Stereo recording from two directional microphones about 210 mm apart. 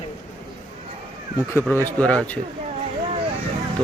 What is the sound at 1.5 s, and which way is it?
Speech, 10° left (ahead or behind).